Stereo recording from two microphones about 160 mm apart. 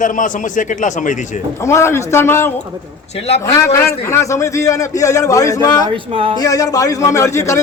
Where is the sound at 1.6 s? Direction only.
15° left (ahead or behind).